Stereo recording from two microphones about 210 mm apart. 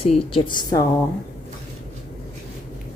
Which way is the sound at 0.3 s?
25° left (ahead or behind).